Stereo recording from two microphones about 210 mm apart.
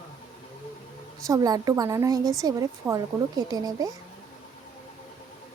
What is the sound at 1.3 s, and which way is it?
Speech, 20° right (ahead or behind).